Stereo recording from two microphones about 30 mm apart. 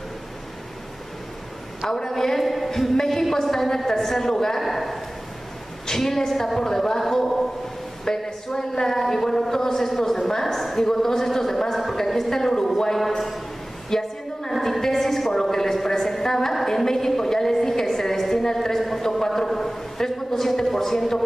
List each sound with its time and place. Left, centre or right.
1.9 s a woman's voice: centre
4.6 s a woman's voice: centre
13.8 s a sound: centre
14.5 s a woman's voice: centre
15.3 s a sound: centre
16.6 s a woman's voice: centre